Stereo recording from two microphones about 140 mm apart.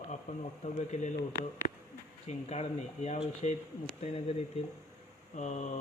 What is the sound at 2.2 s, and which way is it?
Speech, 50° left (ahead or behind).